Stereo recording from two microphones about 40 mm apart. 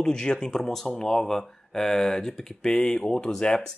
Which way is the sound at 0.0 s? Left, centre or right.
Centre.